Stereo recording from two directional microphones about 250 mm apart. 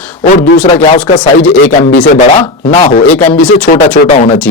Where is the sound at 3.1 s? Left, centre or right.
Centre.